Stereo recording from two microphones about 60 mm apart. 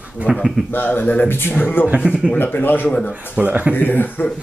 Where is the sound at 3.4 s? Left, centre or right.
Right.